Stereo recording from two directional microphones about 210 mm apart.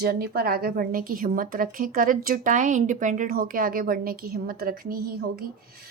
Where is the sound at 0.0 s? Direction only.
45° right (ahead or behind).